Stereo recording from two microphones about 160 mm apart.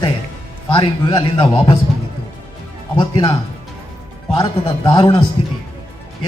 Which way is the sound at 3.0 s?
30° left (ahead or behind).